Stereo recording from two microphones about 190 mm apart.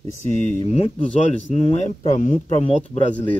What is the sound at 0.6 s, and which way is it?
Speech, 30° left (ahead or behind).